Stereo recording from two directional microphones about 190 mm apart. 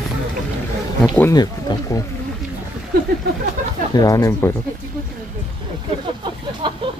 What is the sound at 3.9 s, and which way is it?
Speech, 20° left (ahead or behind).